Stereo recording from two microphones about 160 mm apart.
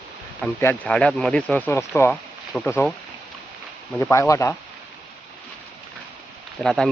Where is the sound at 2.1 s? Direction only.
5° left (ahead or behind).